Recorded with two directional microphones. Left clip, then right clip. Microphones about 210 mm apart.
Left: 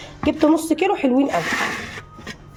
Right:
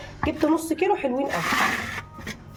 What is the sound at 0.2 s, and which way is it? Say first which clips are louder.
Speech: left 6 dB; 35° left (ahead or behind).